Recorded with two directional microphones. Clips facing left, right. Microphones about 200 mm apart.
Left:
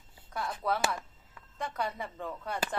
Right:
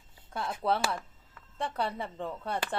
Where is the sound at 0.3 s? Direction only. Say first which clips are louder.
Right 2 dB; 25° right (ahead or behind).